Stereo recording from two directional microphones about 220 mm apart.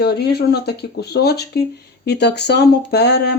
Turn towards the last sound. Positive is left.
turn(degrees=50)  # may be behind; listen again after turning